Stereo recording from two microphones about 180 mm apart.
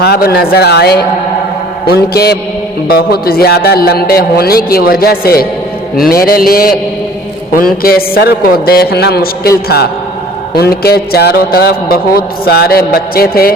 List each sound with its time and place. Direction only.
0.0 s a man's voice: 60° left (ahead or behind)
7.8 s a man's voice: 55° left (ahead or behind)